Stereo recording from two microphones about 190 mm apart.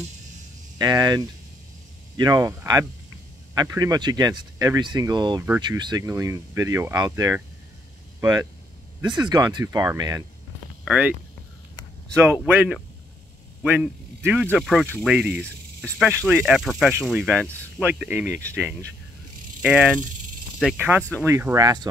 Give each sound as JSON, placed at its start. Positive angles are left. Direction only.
{"t": 0.7, "sound": "speech", "side_deg": -20}
{"t": 10.9, "sound": "speech", "side_deg": -5}
{"t": 12.2, "sound": "speech", "side_deg": -10}
{"t": 14.6, "sound": "speech", "side_deg": 0}